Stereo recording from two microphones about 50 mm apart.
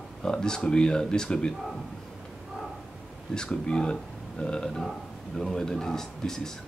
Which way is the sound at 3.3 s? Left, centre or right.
Centre.